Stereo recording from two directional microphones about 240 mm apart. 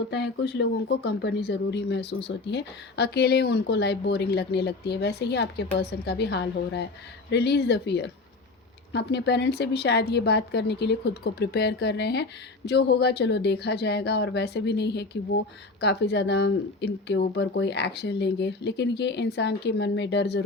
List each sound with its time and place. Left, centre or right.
0.1 s speech: left